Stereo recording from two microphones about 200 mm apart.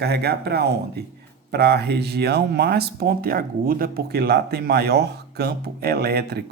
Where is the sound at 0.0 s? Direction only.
55° right (ahead or behind).